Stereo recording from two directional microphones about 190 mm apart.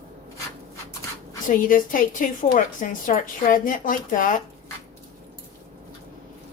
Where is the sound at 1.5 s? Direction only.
45° left (ahead or behind).